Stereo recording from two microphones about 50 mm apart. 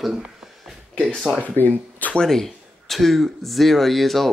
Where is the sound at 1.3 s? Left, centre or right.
Left.